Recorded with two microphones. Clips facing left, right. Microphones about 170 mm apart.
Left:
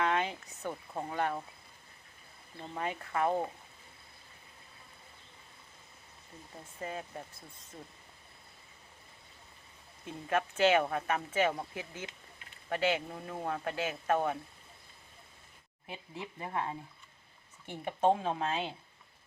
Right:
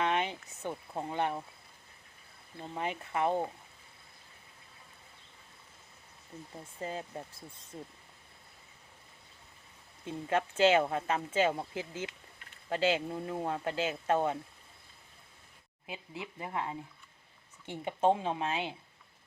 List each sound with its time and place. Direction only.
0.0 s a sound: 20° right (ahead or behind)
0.7 s speech: 10° right (ahead or behind)
1.1 s speech: 20° right (ahead or behind)
2.7 s speech: 20° right (ahead or behind)
6.7 s speech: 25° right (ahead or behind)
10.1 s speech: 25° right (ahead or behind)
16.4 s speech: 20° right (ahead or behind)